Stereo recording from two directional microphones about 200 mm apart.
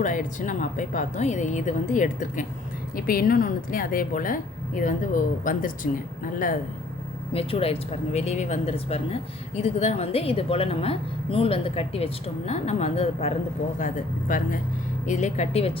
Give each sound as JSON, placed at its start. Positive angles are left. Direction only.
{"t": 0.0, "sound": "a woman's voice", "side_deg": 40}
{"t": 7.3, "sound": "a woman's voice", "side_deg": 30}